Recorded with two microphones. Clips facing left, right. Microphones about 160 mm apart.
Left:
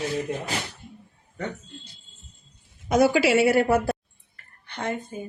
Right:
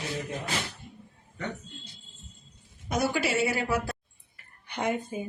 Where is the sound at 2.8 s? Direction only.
90° left; by 3.9 s 60° left (ahead or behind).